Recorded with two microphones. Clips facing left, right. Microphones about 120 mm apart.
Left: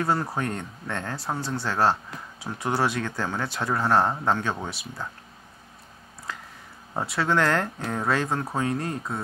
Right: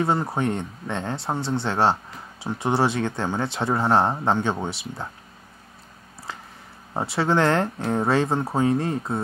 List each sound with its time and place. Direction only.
0.0 s speech: 25° right (ahead or behind)
6.9 s speech: 25° right (ahead or behind)